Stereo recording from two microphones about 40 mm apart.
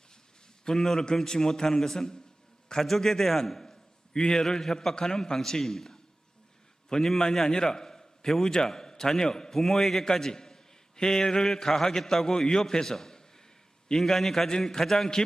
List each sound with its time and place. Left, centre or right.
0.6 s a man's voice: centre
4.1 s a man's voice: centre
7.2 s a man's voice: centre